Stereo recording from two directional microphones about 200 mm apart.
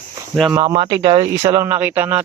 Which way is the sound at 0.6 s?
20° right (ahead or behind).